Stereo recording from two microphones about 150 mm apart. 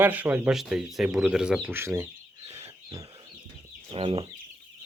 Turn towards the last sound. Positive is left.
turn(degrees=-35)  # may be behind; listen again after turning